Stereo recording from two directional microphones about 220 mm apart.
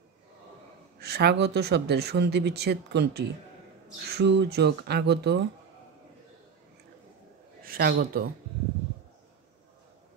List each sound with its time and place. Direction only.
1.0 s speech: 50° right (ahead or behind)
7.6 s a man's voice: 45° right (ahead or behind)